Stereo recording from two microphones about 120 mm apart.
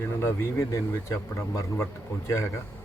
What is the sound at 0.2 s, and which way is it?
Speech, 25° left (ahead or behind).